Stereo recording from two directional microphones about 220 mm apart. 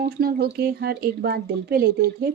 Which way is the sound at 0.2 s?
45° right (ahead or behind).